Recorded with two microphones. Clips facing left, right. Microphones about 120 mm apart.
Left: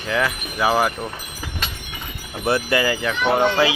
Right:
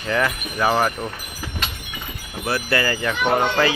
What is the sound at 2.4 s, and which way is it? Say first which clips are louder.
Speech: left 3 dB; 20° left (ahead or behind).